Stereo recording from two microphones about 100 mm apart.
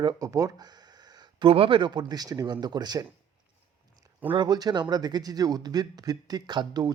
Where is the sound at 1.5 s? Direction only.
60° right (ahead or behind); by 3.0 s 45° right (ahead or behind).